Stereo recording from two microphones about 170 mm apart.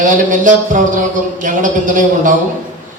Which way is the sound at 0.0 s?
50° right (ahead or behind).